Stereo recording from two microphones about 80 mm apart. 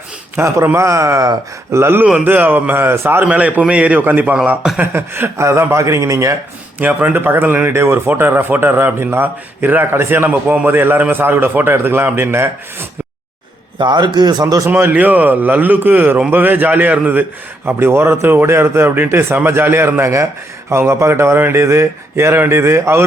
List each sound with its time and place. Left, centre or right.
0.3 s a man's voice: right
3.2 s a man's voice: centre
4.4 s a man's voice: centre
4.8 s a man's voice: right
6.7 s a man's voice: right
13.7 s a man's voice: right
14.7 s a man's voice: right